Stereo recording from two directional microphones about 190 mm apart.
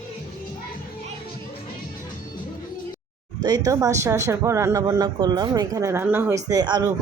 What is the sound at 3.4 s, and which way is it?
Speech, 20° right (ahead or behind).